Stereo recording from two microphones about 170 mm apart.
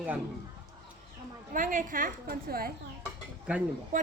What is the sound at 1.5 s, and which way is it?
A woman's voice, 50° right (ahead or behind).